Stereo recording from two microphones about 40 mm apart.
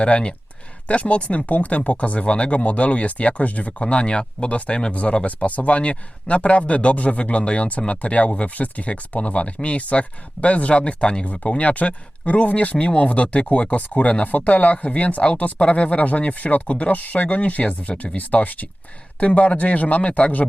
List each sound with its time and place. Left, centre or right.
0.0 s speech: left